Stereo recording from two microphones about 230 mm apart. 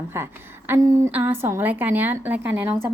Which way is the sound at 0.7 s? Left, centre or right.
Centre.